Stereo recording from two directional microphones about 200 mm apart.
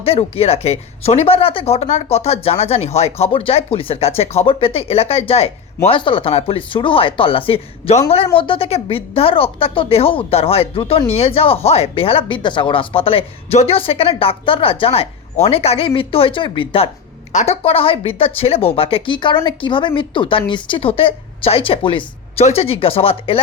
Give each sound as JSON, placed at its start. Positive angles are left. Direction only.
{"t": 0.0, "sound": "speech", "side_deg": 30}